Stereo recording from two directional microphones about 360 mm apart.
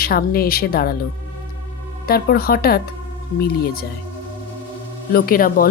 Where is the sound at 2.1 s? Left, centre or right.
Left.